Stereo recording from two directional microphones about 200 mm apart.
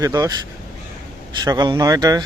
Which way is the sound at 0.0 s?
20° right (ahead or behind).